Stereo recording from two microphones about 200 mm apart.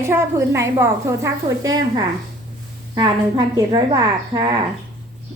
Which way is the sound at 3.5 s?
20° right (ahead or behind).